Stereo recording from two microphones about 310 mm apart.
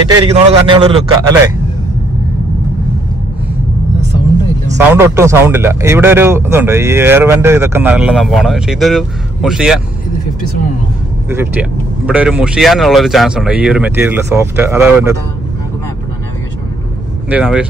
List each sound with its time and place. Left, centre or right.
0.2 s speech: centre
4.9 s speech: centre
11.2 s speech: centre
17.3 s speech: centre